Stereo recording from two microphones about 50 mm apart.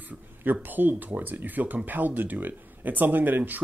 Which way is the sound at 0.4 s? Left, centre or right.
Right.